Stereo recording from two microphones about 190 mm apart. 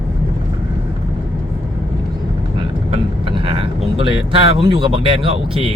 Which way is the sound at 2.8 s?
30° right (ahead or behind).